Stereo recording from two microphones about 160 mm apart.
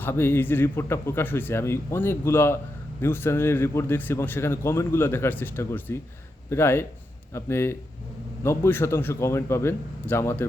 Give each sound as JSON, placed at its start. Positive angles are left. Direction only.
{"t": 0.0, "sound": "speech", "side_deg": 15}